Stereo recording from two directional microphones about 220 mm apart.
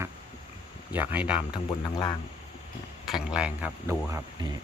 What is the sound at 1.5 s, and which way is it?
Music, 20° left (ahead or behind).